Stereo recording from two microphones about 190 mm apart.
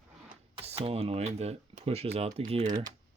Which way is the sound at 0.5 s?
30° right (ahead or behind).